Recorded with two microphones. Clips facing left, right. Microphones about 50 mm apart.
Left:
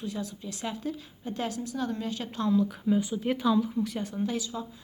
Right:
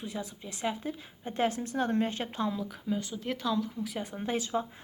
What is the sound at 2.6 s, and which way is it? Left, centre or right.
Speech, centre.